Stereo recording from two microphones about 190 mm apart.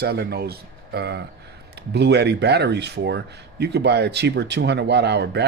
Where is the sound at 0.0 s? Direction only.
55° right (ahead or behind).